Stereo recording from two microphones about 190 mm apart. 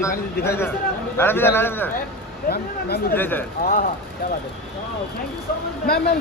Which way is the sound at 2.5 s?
55° left (ahead or behind).